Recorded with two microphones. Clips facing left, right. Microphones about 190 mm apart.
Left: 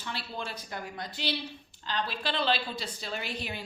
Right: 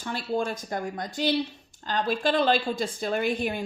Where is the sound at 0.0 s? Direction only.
45° right (ahead or behind).